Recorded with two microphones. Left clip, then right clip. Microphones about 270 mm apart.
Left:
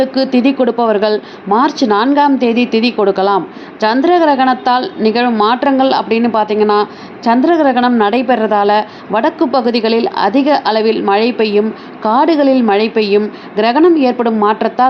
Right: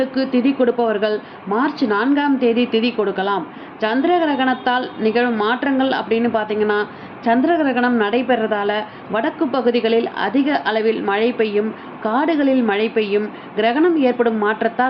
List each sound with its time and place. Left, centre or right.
0.0 s a woman's voice: left